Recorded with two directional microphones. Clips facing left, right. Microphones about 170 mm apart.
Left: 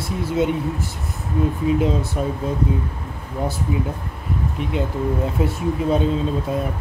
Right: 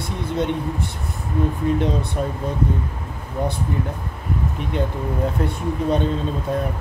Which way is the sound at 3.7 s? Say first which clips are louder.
Left 2 dB; 5° left (ahead or behind).